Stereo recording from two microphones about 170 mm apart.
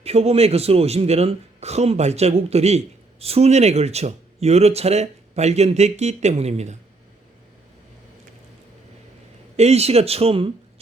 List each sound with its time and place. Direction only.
0.0 s speech: 35° right (ahead or behind)
9.6 s speech: 40° right (ahead or behind)